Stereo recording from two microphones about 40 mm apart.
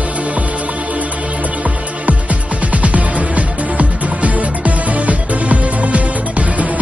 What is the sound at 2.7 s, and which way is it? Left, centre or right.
Music, right.